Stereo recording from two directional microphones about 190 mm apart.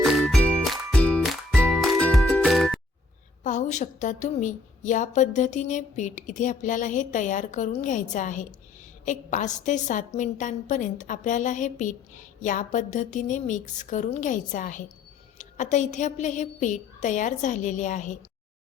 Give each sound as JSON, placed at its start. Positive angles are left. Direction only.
{"t": 0.0, "sound": "music", "side_deg": 0}
{"t": 3.4, "sound": "a woman's voice", "side_deg": 40}